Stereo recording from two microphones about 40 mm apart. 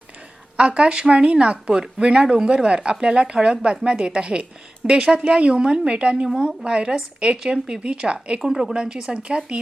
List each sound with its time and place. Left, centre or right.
0.5 s a woman's voice: right
8.4 s speech: centre
8.7 s a woman's voice: right